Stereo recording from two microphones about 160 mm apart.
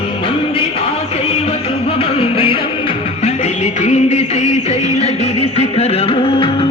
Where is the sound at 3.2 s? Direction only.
45° left (ahead or behind).